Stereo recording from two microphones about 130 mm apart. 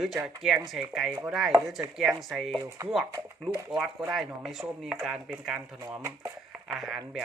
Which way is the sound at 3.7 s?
5° right (ahead or behind).